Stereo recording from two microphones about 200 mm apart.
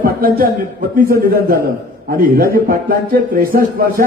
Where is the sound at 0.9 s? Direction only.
45° right (ahead or behind).